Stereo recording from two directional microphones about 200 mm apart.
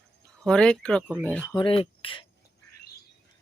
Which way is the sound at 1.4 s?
25° left (ahead or behind).